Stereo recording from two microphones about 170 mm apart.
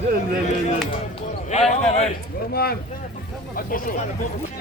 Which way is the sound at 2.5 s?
65° left (ahead or behind).